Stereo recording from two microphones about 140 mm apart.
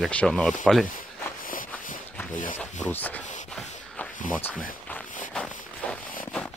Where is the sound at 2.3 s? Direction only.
65° left (ahead or behind).